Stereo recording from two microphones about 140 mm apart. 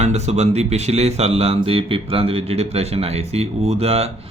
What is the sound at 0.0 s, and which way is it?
Speech, 50° right (ahead or behind).